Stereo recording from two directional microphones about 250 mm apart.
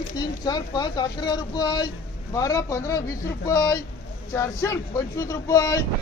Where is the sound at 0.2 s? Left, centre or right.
Centre.